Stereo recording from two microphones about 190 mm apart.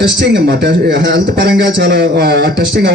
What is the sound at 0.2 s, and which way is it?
A man's voice, 60° right (ahead or behind).